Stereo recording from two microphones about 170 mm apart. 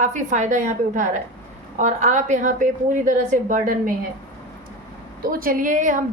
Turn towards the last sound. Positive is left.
turn(degrees=-50)  # may be behind; listen again after turning